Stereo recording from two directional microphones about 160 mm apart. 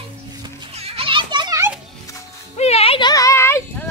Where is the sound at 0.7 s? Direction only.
40° right (ahead or behind).